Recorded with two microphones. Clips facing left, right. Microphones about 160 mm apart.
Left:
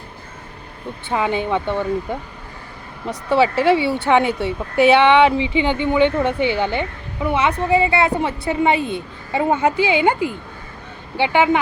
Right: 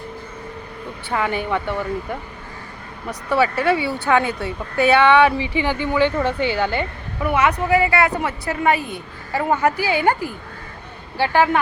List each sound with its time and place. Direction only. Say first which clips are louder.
1.1 s a woman's voice: left 2 dB; 20° left (ahead or behind)